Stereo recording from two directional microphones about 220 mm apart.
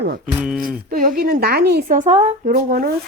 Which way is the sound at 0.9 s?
40° right (ahead or behind).